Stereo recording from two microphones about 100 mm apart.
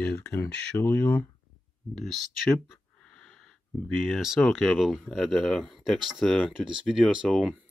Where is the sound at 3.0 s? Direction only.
10° left (ahead or behind).